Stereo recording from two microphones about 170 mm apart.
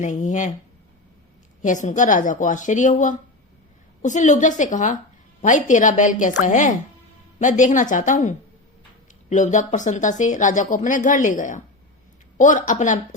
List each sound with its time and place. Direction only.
0.0 s speech: 45° left (ahead or behind)
1.6 s speech: 45° left (ahead or behind)